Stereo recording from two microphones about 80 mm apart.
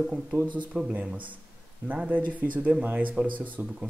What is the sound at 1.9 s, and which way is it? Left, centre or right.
Speech, centre.